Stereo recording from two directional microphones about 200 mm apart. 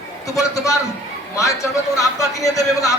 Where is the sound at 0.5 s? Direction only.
15° left (ahead or behind).